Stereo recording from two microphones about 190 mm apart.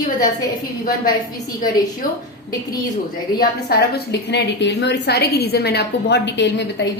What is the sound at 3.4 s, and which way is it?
A woman's voice, 55° left (ahead or behind).